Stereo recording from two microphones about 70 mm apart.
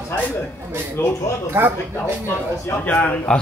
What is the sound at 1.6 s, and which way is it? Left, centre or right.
Speech, right.